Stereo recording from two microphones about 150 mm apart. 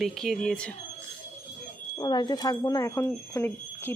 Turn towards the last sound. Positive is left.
turn(degrees=15)  # may be behind; listen again after turning